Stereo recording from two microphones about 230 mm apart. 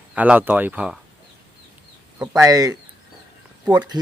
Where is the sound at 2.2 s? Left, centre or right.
Centre.